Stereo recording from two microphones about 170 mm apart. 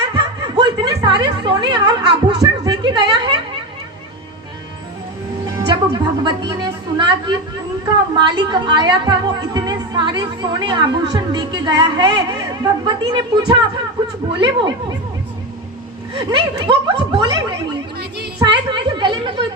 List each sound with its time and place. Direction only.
0.2 s snicker: 25° right (ahead or behind)
5.5 s a woman's voice: 25° right (ahead or behind)
16.1 s a woman's voice: 30° right (ahead or behind)
18.7 s chatter: 30° right (ahead or behind)